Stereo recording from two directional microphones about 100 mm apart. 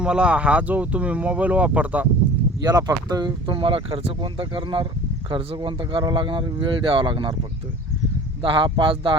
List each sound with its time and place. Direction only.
0.0 s speech: 10° right (ahead or behind)
2.6 s speech: 40° right (ahead or behind); by 4.9 s 55° right (ahead or behind)
5.3 s speech: 70° right (ahead or behind)
5.5 s speech: 55° right (ahead or behind)
8.4 s speech: 60° right (ahead or behind)